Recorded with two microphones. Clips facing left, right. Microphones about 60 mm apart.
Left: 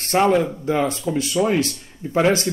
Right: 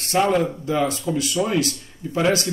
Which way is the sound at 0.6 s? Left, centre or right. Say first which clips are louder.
Left 1 dB; left.